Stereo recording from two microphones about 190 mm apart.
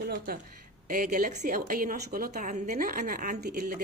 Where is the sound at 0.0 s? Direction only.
55° right (ahead or behind).